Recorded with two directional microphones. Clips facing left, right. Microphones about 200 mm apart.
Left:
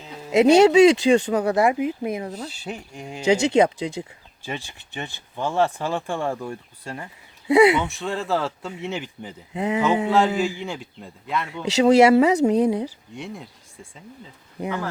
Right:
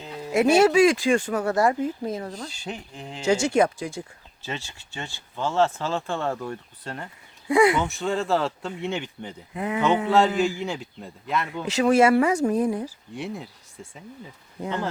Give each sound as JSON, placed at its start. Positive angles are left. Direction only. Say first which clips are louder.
{"t": 0.3, "sound": "speech", "louder": "left 4 dB", "side_deg": 20}
{"t": 7.4, "sound": "speech", "louder": "left 4 dB", "side_deg": 20}
{"t": 7.9, "sound": "speech", "louder": "right 1 dB", "side_deg": 0}
{"t": 9.5, "sound": "speech", "louder": "left 4 dB", "side_deg": 20}
{"t": 10.1, "sound": "speech", "louder": "even", "side_deg": 0}
{"t": 11.8, "sound": "speech", "louder": "left 4 dB", "side_deg": 20}
{"t": 13.1, "sound": "speech", "louder": "right 4 dB", "side_deg": -5}